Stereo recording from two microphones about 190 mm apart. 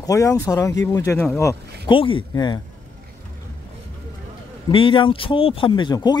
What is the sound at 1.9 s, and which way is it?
Speech, 25° left (ahead or behind).